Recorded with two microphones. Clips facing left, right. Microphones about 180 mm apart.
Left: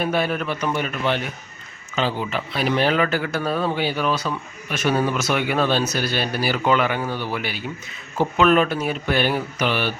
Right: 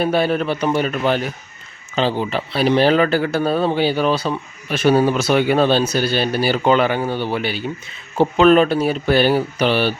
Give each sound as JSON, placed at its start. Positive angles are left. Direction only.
{"t": 0.0, "sound": "speech", "side_deg": -30}